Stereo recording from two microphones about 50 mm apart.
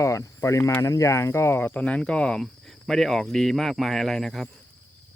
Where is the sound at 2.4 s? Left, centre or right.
Centre.